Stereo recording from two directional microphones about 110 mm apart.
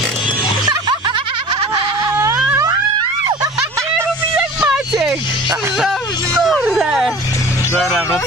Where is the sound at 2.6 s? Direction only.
40° right (ahead or behind).